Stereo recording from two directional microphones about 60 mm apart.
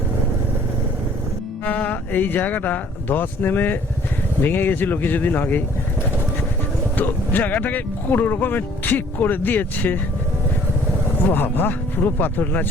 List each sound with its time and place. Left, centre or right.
1.6 s speech: left
6.9 s speech: left
11.3 s speech: left